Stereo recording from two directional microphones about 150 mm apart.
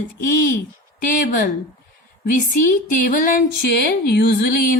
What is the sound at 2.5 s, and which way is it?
Speech, 65° left (ahead or behind).